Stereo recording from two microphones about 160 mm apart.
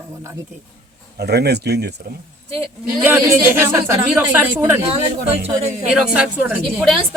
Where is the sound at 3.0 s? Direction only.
15° right (ahead or behind).